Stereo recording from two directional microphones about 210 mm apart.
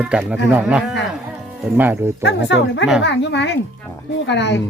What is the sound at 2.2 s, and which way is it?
Speech, 55° left (ahead or behind).